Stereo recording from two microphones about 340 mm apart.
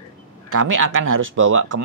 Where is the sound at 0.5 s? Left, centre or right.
Right.